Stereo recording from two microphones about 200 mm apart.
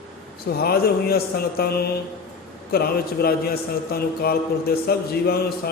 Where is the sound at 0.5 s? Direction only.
50° left (ahead or behind).